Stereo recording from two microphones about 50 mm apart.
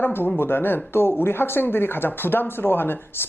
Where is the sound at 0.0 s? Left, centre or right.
Left.